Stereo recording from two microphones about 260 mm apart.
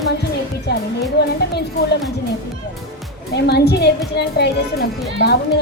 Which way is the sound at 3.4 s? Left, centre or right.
Left.